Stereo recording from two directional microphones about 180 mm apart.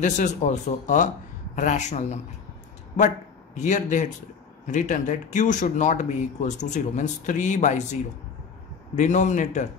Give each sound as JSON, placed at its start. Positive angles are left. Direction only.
{"t": 0.0, "sound": "speech", "side_deg": 40}
{"t": 3.5, "sound": "a man's voice", "side_deg": 40}